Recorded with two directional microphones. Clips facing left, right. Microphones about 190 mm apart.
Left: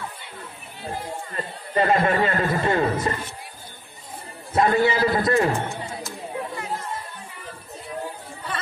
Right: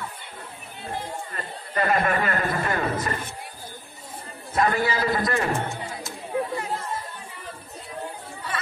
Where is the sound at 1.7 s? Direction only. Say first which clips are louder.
Left 3 dB; 25° left (ahead or behind).